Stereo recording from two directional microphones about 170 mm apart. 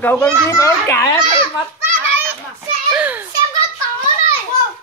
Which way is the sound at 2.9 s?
10° right (ahead or behind).